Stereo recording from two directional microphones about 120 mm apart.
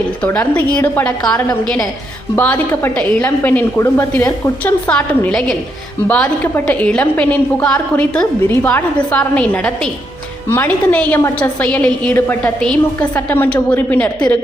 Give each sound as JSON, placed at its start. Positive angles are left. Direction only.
{"t": 0.2, "sound": "a woman's voice", "side_deg": 10}
{"t": 2.3, "sound": "a woman's voice", "side_deg": 15}
{"t": 4.6, "sound": "a woman's voice", "side_deg": 10}